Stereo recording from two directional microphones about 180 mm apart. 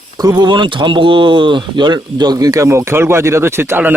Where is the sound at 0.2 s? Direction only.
20° right (ahead or behind).